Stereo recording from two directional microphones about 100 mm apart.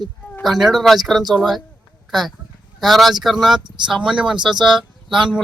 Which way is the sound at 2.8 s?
Centre (ahead or behind).